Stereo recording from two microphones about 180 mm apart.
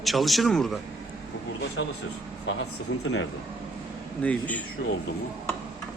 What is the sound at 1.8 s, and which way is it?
Speech, 90° left.